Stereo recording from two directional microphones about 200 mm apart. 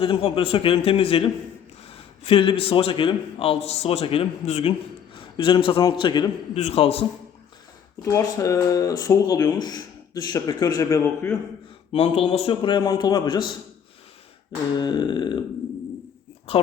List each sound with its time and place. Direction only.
0.0 s a man's voice: 25° left (ahead or behind)
8.0 s speech: 15° left (ahead or behind)
11.9 s a man's voice: 30° left (ahead or behind)
14.8 s a man's voice: 20° left (ahead or behind)